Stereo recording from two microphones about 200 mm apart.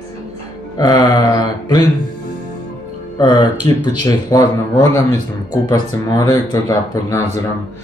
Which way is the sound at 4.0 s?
15° left (ahead or behind).